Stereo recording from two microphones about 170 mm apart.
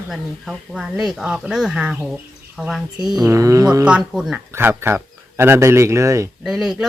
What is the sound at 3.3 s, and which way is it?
Speech, 20° right (ahead or behind).